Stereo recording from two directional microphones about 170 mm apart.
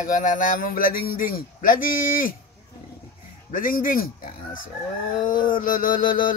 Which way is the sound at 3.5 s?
55° left (ahead or behind).